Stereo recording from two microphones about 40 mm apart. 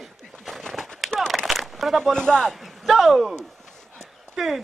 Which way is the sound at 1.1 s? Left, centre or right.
Left.